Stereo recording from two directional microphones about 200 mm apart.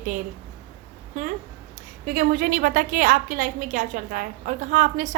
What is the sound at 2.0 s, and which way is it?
A woman's voice, 45° right (ahead or behind).